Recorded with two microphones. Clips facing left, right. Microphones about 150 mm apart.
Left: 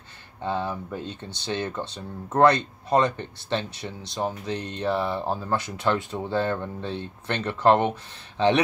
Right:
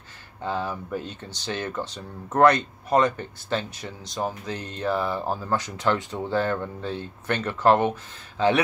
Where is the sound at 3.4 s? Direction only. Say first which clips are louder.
Even; 25° left (ahead or behind).